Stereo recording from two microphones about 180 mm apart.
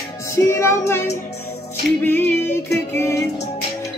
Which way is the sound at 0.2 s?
15° left (ahead or behind).